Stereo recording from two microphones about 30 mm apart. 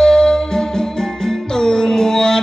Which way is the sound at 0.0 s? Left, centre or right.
Centre.